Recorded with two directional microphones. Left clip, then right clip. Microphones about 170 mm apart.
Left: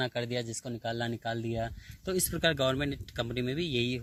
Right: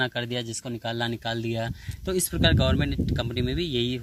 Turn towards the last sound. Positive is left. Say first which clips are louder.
# right 4 dB
turn(degrees=40)  # may be behind; listen again after turning